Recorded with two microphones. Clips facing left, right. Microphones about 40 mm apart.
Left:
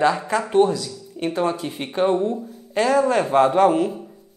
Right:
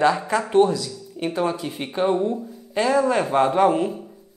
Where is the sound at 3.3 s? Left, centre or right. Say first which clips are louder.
Left 3 dB; centre.